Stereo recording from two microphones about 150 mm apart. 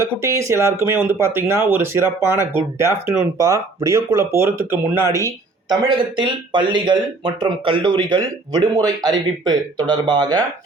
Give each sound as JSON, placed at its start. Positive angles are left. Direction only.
{"t": 0.0, "sound": "speech", "side_deg": -20}
{"t": 6.1, "sound": "speech", "side_deg": -30}